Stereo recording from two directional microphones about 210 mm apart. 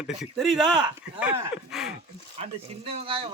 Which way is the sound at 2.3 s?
30° right (ahead or behind).